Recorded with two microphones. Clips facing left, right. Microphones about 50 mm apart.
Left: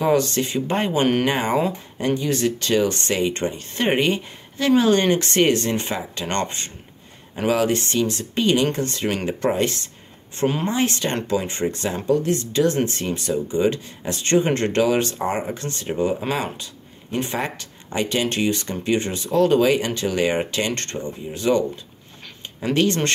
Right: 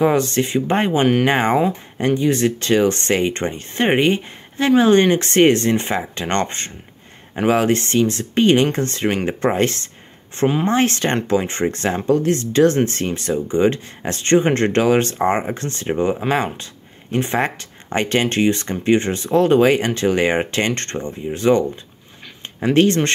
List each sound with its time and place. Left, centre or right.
0.0 s speech: right
9.1 s speech: right